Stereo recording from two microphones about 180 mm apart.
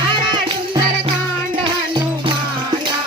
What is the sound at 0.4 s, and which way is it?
Music, 30° right (ahead or behind).